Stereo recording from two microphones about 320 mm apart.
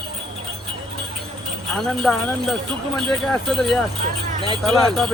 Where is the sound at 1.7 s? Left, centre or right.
Centre.